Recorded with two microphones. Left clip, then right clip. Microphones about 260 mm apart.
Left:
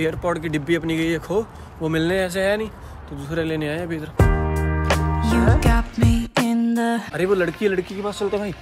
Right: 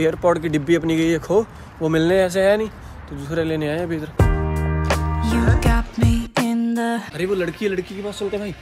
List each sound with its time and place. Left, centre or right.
0.0 s speech: centre
3.3 s music: centre
7.2 s speech: centre